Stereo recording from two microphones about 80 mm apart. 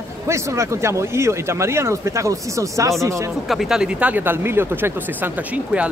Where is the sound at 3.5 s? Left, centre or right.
Centre; by 4.9 s right.